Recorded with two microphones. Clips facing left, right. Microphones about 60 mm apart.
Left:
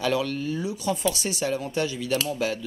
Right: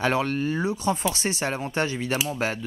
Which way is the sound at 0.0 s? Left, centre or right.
Right.